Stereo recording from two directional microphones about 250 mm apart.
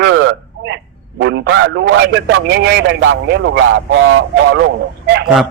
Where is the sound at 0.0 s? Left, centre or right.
Right.